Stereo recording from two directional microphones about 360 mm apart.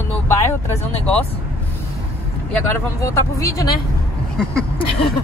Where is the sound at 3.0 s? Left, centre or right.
Centre.